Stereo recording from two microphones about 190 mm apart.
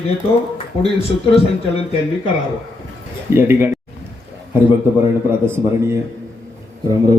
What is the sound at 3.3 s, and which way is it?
Speech, 10° right (ahead or behind).